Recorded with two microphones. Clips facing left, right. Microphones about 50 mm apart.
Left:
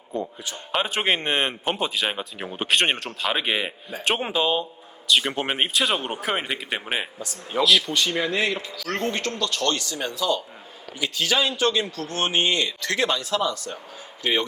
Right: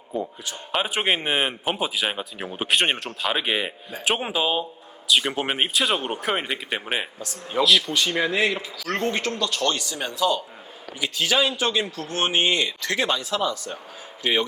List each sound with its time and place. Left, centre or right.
0.1 s a man's voice: centre
13.1 s a man's voice: centre